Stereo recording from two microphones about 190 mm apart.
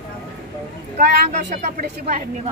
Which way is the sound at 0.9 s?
40° right (ahead or behind).